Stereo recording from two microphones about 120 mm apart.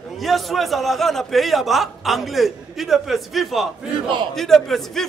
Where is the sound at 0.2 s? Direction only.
Centre (ahead or behind).